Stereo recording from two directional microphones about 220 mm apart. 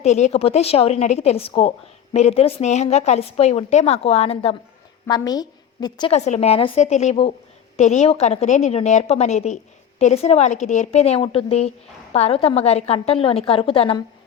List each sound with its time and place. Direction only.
0.0 s a woman's voice: 30° left (ahead or behind)